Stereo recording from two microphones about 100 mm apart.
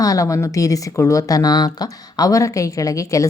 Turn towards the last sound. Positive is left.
turn(degrees=35)  # may be behind; listen again after turning